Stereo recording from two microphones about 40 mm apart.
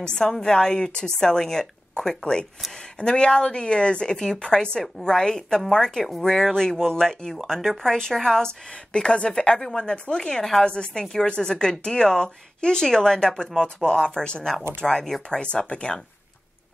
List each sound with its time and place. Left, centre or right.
0.0 s a woman's voice: centre
8.9 s a woman's voice: left